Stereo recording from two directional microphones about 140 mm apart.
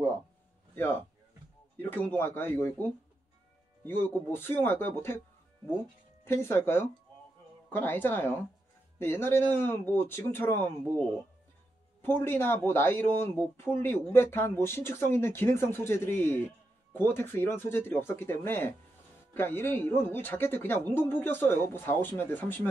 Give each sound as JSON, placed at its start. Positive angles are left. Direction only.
{"t": 1.8, "sound": "speech", "side_deg": 15}
{"t": 3.8, "sound": "speech", "side_deg": 15}
{"t": 6.2, "sound": "speech", "side_deg": 15}